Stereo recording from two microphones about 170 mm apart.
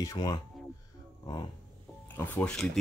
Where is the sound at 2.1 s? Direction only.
10° left (ahead or behind).